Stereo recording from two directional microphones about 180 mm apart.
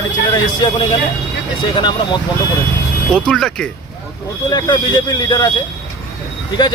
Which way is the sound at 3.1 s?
5° left (ahead or behind).